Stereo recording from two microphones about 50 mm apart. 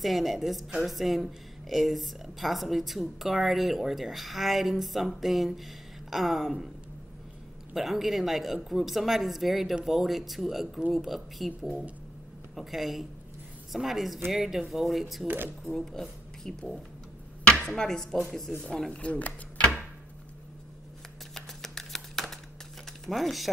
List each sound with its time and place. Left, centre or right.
0.0 s speech: centre
7.7 s speech: centre
15.2 s speech: right
15.6 s speech: centre
17.6 s chopping: centre
18.9 s speech: left
21.4 s a sound: centre
23.0 s speech: centre